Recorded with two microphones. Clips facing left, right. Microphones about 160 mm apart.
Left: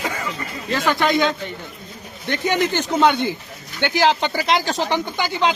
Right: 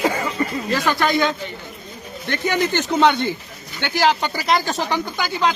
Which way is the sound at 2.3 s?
15° left (ahead or behind).